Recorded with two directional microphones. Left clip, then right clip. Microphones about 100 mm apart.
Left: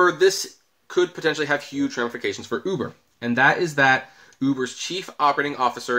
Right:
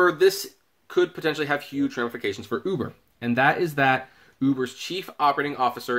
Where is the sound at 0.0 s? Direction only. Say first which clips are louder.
Left 2 dB; 30° right (ahead or behind).